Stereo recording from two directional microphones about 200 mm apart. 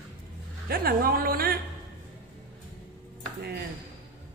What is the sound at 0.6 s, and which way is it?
Speech, 50° right (ahead or behind).